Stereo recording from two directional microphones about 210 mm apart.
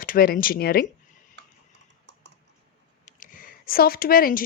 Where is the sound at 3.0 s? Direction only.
40° left (ahead or behind).